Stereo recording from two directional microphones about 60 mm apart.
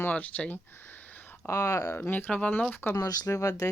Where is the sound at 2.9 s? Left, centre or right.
Left.